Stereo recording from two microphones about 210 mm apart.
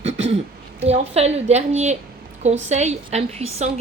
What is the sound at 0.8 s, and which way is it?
A woman's voice, 30° right (ahead or behind).